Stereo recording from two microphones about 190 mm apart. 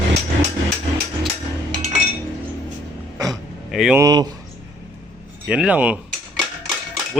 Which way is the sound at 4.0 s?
20° right (ahead or behind).